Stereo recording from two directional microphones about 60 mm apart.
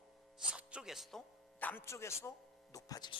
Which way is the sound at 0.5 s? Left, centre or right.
Centre.